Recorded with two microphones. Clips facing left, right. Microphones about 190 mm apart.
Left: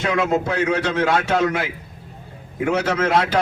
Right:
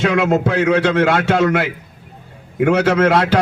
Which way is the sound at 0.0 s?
75° right (ahead or behind).